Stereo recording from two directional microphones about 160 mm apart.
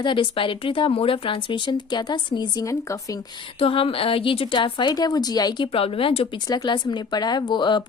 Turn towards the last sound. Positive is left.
turn(degrees=30)  # may be behind; listen again after turning